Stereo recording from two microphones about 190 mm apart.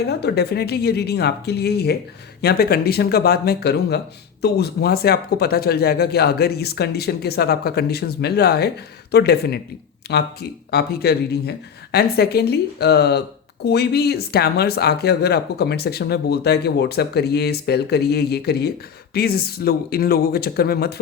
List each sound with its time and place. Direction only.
0.0 s speech: 60° left (ahead or behind)